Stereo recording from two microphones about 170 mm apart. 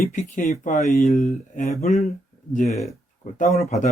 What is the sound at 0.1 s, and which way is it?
Speech, 45° left (ahead or behind).